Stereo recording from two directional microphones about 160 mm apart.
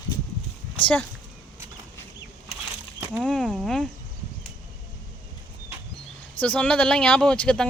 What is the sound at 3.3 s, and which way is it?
Speech, 5° left (ahead or behind).